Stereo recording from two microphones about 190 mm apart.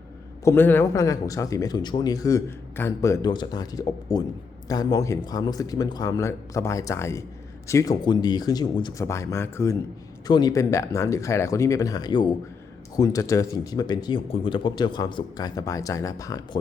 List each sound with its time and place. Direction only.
0.4 s speech: 10° left (ahead or behind)